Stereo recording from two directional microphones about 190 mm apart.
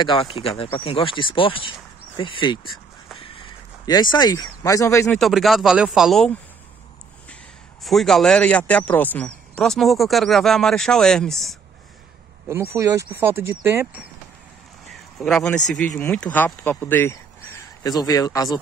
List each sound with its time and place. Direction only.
0.0 s speech: 25° left (ahead or behind)
3.2 s a sound: 25° left (ahead or behind)
5.1 s speech: centre (ahead or behind)
7.8 s speech: centre (ahead or behind)
12.4 s speech: 15° right (ahead or behind)
14.9 s speech: centre (ahead or behind); by 18.6 s 20° left (ahead or behind)